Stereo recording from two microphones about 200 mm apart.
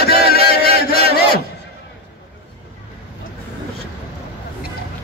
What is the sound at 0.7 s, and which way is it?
Chant, 50° left (ahead or behind).